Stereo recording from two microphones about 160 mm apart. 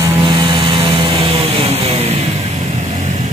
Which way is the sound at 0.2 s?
30° right (ahead or behind).